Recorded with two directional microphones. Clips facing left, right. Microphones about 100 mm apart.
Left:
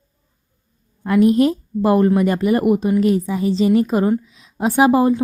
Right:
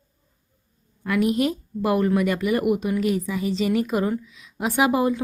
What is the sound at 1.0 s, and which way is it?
A woman's voice, 35° left (ahead or behind).